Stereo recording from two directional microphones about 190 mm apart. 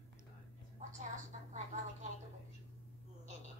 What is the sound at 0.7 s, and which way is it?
A woman's voice, 40° right (ahead or behind).